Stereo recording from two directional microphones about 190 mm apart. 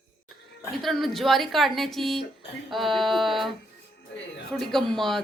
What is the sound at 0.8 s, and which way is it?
A woman's voice, centre (ahead or behind).